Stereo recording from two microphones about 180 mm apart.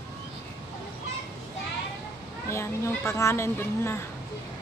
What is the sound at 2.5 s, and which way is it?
A child's voice, 15° left (ahead or behind).